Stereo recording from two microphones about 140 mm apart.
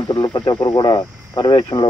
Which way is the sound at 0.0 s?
35° left (ahead or behind).